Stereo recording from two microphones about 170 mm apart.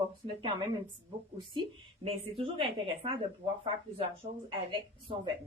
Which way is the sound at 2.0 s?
30° right (ahead or behind).